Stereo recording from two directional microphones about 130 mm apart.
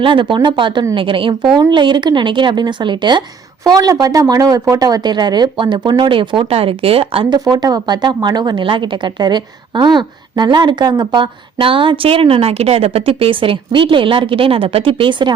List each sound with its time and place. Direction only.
0.0 s speech: 40° right (ahead or behind)
7.3 s speech: 30° right (ahead or behind)